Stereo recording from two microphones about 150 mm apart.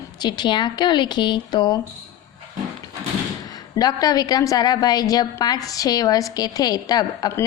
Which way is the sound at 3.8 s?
25° left (ahead or behind).